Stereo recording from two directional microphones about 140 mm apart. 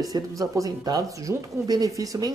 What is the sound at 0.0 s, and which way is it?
Speech, 25° right (ahead or behind).